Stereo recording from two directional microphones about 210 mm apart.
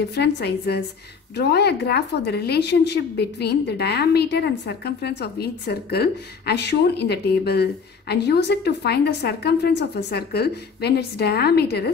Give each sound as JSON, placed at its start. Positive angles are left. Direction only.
{"t": 0.1, "sound": "a woman's voice", "side_deg": 50}